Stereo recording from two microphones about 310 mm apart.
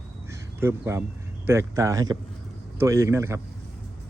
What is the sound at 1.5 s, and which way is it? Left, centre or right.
Speech, centre.